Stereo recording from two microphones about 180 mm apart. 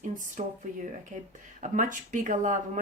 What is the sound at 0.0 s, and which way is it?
Speech, 45° right (ahead or behind).